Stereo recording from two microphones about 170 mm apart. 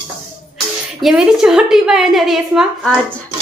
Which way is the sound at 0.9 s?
5° right (ahead or behind).